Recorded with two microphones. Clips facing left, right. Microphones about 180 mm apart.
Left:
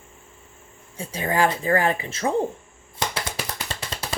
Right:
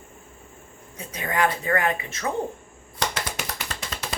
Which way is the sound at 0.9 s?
30° left (ahead or behind).